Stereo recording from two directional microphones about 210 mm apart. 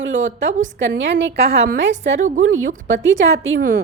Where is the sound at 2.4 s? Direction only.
70° right (ahead or behind).